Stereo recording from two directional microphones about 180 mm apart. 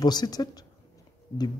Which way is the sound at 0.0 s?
20° left (ahead or behind).